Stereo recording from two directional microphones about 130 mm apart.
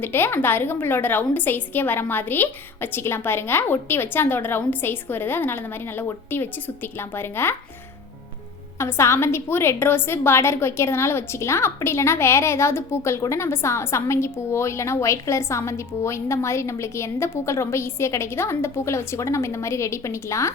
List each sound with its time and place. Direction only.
0.0 s a woman's voice: 15° left (ahead or behind)
8.8 s a woman's voice: 20° left (ahead or behind)